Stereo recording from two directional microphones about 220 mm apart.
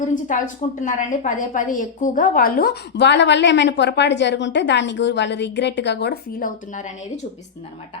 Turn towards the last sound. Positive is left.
turn(degrees=35)  # may be behind; listen again after turning